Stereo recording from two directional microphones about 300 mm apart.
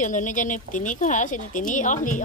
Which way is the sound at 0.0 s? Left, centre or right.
Left.